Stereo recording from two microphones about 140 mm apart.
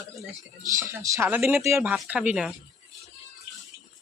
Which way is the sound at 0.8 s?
20° right (ahead or behind).